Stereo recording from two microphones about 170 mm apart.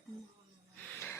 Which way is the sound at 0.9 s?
10° left (ahead or behind).